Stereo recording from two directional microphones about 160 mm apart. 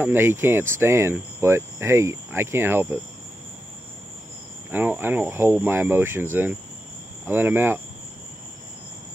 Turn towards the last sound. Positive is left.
turn(degrees=-15)  # may be behind; listen again after turning